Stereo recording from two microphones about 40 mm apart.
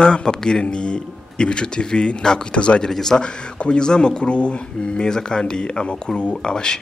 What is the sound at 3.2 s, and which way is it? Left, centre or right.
Speech, left.